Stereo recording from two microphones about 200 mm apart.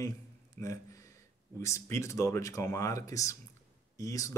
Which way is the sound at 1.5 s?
15° left (ahead or behind).